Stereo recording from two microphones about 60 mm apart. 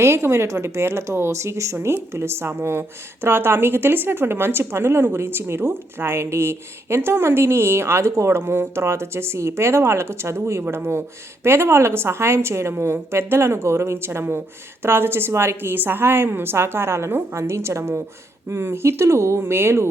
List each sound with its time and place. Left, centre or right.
0.0 s speech: right
10.6 s speech: right
11.4 s speech: right
19.4 s speech: right